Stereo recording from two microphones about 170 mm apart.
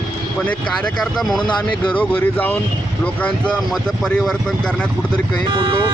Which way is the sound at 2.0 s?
10° left (ahead or behind).